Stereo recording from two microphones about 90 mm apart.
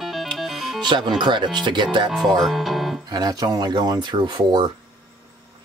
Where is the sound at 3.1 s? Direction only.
45° right (ahead or behind).